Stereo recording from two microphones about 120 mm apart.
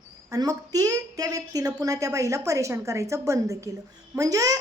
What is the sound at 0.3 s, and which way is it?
A woman's voice, 30° right (ahead or behind).